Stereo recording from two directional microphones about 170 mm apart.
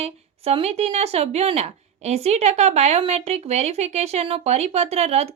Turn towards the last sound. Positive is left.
turn(degrees=-40)  # may be behind; listen again after turning